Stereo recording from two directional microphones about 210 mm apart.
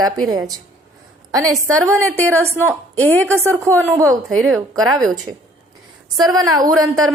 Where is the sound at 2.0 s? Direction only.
10° left (ahead or behind).